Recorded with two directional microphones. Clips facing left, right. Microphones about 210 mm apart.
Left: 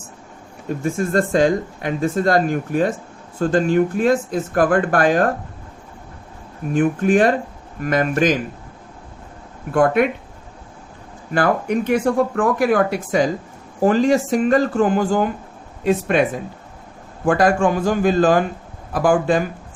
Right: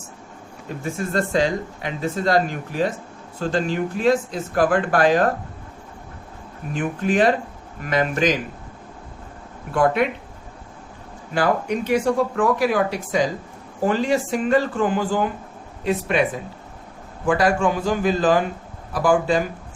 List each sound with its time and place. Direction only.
0.9 s speech: 50° left (ahead or behind)
6.7 s speech: 50° left (ahead or behind)
9.7 s speech: 50° left (ahead or behind)
11.3 s speech: 50° left (ahead or behind)
17.2 s speech: 50° left (ahead or behind)